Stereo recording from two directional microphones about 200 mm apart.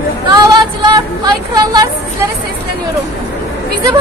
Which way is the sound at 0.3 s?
20° right (ahead or behind).